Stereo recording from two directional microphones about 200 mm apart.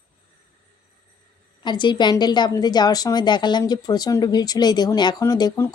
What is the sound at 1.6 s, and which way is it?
A woman's voice, 20° left (ahead or behind).